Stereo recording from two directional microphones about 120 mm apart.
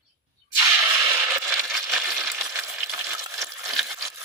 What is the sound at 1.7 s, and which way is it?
Coin, 5° right (ahead or behind).